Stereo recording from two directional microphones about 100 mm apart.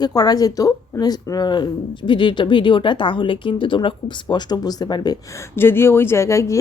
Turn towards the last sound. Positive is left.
turn(degrees=30)  # may be behind; listen again after turning